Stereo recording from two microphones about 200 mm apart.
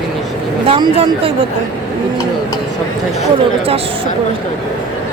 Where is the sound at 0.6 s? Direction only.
25° right (ahead or behind).